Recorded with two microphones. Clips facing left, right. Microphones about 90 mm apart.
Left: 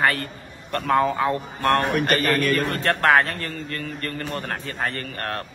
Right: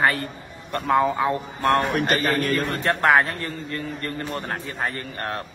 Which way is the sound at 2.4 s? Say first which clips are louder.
Left 1 dB; 20° right (ahead or behind).